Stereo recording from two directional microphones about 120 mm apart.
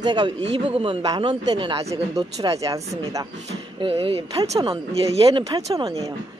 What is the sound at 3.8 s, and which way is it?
Speech, 50° right (ahead or behind).